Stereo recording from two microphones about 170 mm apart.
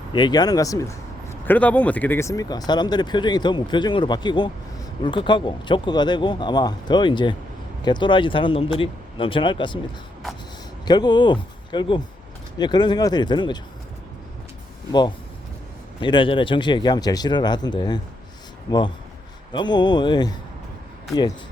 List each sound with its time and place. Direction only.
0.1 s speech: 25° left (ahead or behind)
10.8 s speech: 25° left (ahead or behind)
16.0 s speech: 30° left (ahead or behind)